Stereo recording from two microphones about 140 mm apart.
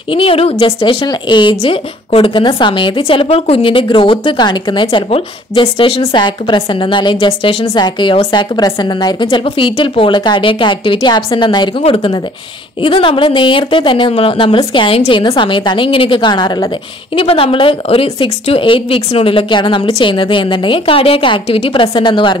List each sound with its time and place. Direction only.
0.1 s speech: 40° left (ahead or behind)